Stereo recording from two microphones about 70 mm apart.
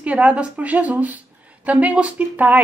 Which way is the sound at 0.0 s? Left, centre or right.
Centre.